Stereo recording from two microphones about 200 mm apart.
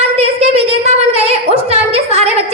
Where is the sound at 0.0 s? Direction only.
30° right (ahead or behind).